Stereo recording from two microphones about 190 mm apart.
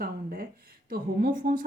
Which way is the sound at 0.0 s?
50° right (ahead or behind).